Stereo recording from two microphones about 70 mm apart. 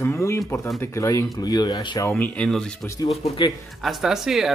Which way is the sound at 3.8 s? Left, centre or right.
Centre.